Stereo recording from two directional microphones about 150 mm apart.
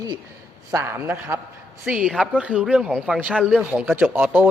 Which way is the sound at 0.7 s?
15° right (ahead or behind).